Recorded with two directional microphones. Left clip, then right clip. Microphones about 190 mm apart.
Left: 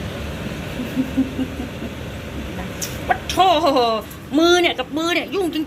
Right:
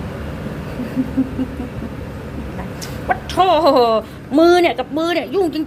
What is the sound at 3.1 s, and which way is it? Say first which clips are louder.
Speech: right 1 dB; 15° right (ahead or behind).